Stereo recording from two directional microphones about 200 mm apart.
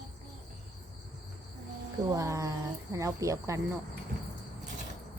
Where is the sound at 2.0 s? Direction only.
15° right (ahead or behind).